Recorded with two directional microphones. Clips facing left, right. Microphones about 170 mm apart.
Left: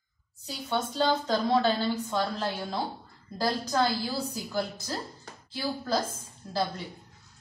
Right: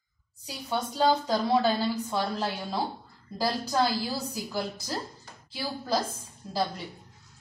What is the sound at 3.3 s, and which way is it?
Speech, 10° right (ahead or behind).